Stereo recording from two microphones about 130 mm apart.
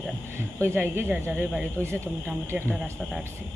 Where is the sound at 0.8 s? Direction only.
15° right (ahead or behind).